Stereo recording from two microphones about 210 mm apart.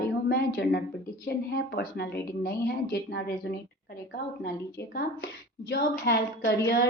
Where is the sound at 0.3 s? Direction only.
50° left (ahead or behind).